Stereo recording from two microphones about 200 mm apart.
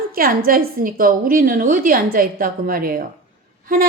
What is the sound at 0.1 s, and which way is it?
A woman's voice, 45° right (ahead or behind).